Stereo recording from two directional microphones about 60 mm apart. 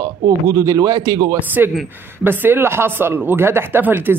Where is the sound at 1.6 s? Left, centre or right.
Right.